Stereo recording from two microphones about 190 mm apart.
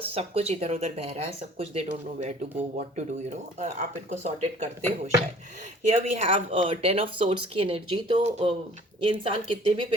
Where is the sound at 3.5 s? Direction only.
35° right (ahead or behind).